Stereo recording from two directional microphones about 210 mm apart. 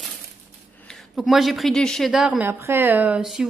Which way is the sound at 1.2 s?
Centre (ahead or behind).